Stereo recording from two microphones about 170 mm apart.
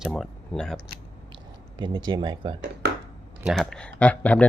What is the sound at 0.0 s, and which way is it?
Speech, 5° left (ahead or behind).